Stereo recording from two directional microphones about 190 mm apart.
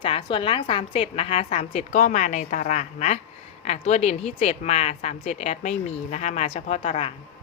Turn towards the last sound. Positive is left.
turn(degrees=35)  # may be behind; listen again after turning